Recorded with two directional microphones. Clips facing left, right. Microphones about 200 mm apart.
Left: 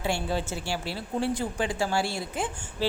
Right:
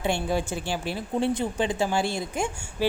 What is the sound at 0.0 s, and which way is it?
A woman's voice, 15° right (ahead or behind).